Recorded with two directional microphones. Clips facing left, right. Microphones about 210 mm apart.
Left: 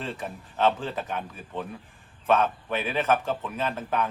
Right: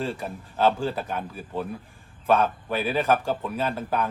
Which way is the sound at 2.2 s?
5° right (ahead or behind).